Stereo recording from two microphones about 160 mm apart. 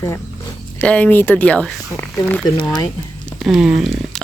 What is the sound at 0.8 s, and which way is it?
Speech, 10° left (ahead or behind).